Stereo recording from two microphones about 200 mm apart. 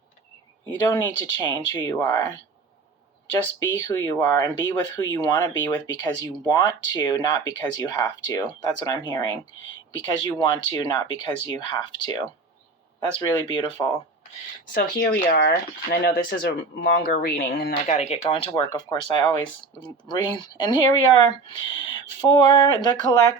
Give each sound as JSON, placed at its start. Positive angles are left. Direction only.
{"t": 0.8, "sound": "speech", "side_deg": 15}
{"t": 14.7, "sound": "speech", "side_deg": 55}
{"t": 17.9, "sound": "speech", "side_deg": 35}
{"t": 20.7, "sound": "speech", "side_deg": 25}